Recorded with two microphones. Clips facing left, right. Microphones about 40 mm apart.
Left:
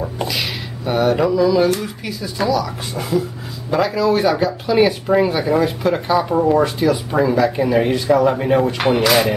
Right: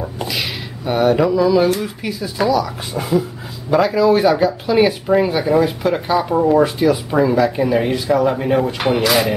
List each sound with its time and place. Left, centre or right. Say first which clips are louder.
0.0 s speech: left 1 dB; centre